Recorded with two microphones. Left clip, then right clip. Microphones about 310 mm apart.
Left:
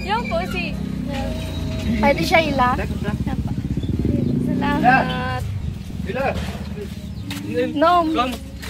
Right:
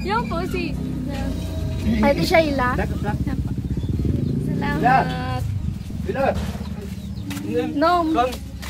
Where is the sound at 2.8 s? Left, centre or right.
Right.